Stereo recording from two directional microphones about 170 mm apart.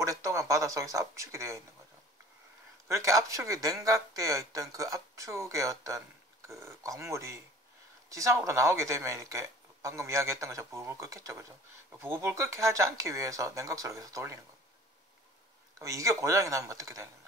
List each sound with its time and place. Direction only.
0.0 s speech: 20° right (ahead or behind)
2.9 s speech: 20° right (ahead or behind)
15.8 s speech: 20° right (ahead or behind)